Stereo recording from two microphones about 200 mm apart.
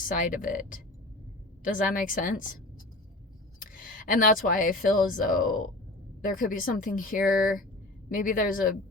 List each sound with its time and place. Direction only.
0.1 s a woman's voice: 40° left (ahead or behind)
3.6 s a woman's voice: 45° left (ahead or behind)
7.2 s speech: centre (ahead or behind)
8.1 s a woman's voice: 45° left (ahead or behind)